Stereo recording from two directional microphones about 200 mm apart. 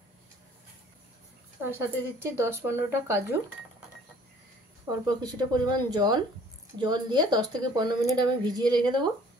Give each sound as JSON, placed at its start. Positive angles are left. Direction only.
{"t": 1.6, "sound": "speech", "side_deg": -10}
{"t": 4.8, "sound": "speech", "side_deg": -20}